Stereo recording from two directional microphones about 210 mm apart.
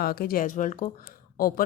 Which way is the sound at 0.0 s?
45° left (ahead or behind).